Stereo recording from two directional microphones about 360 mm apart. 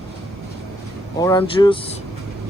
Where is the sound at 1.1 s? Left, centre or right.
Centre.